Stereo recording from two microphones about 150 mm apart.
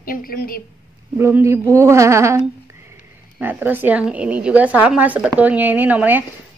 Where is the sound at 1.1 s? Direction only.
20° right (ahead or behind).